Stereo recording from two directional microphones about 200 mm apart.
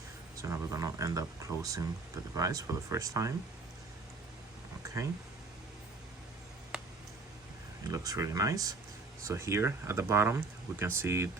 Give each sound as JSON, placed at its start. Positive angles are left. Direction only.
{"t": 0.4, "sound": "speech", "side_deg": -15}
{"t": 7.9, "sound": "speech", "side_deg": -15}